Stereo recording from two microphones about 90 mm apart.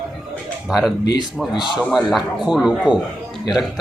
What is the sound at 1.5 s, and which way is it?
Speech, 60° left (ahead or behind).